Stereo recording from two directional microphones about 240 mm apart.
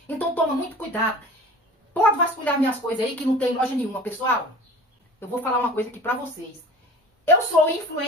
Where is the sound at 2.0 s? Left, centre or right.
Centre.